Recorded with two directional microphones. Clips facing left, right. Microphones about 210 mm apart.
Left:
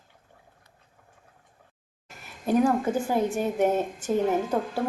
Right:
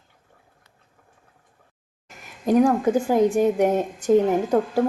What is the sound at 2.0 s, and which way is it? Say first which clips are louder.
A woman's voice: right 5 dB; 15° right (ahead or behind).